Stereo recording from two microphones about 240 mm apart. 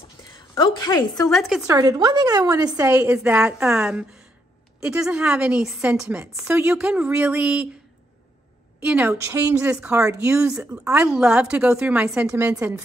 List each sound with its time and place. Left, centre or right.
0.6 s a woman's voice: centre
1.3 s speech: centre
1.7 s a woman's voice: centre
8.8 s a woman's voice: centre